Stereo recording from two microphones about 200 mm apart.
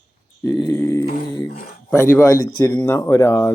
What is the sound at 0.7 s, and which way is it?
Speech, 5° left (ahead or behind).